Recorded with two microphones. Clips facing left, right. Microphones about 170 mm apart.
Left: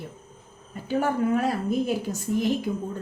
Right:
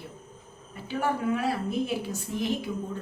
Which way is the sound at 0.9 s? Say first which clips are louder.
Left 4 dB; 45° left (ahead or behind).